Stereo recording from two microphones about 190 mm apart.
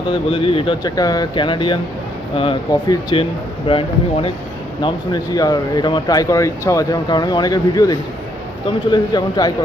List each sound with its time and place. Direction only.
0.3 s speech: 30° left (ahead or behind)